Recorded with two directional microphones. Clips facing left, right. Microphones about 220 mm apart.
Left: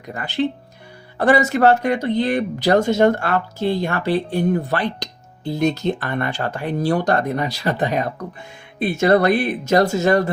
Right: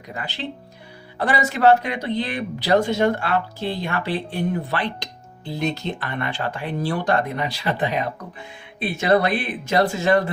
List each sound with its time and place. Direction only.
0.1 s speech: 50° left (ahead or behind)